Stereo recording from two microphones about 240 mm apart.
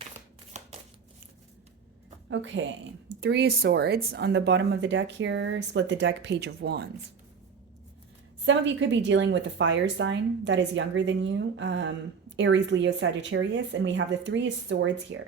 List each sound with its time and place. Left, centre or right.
0.5 s a sound: right
2.3 s speech: right
8.4 s speech: right